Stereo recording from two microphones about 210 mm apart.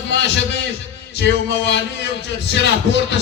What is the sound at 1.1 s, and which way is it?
Speech, 55° left (ahead or behind).